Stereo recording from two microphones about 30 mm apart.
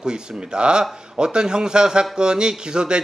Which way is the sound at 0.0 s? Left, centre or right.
Right.